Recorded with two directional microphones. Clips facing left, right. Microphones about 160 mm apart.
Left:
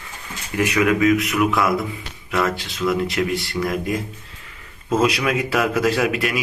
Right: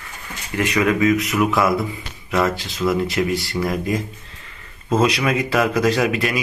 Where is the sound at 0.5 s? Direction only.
10° left (ahead or behind).